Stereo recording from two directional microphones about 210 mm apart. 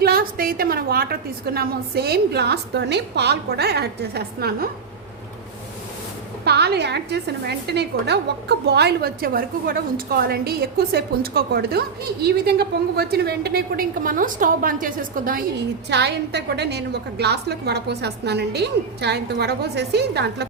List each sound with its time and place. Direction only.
0.0 s a woman's voice: 45° right (ahead or behind)
6.4 s a woman's voice: 50° right (ahead or behind)